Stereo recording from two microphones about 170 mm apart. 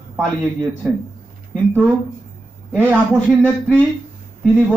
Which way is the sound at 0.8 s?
5° right (ahead or behind).